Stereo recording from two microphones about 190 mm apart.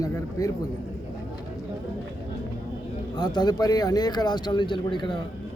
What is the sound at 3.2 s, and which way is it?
Speech, 20° left (ahead or behind).